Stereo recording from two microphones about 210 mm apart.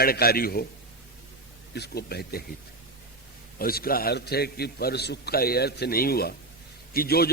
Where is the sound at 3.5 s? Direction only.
45° left (ahead or behind).